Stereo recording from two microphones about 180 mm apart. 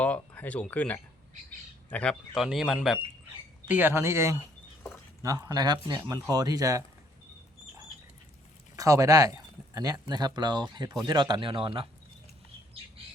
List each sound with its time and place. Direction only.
0.0 s speech: 10° left (ahead or behind); by 6.8 s 20° right (ahead or behind)
8.7 s speech: 15° right (ahead or behind)